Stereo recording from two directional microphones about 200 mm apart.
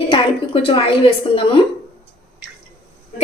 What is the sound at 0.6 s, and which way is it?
Speech, 25° left (ahead or behind).